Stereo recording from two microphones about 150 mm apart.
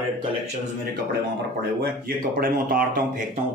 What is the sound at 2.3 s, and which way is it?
Speech, 75° right (ahead or behind).